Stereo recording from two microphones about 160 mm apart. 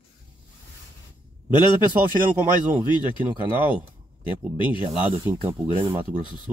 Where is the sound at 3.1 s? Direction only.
30° left (ahead or behind).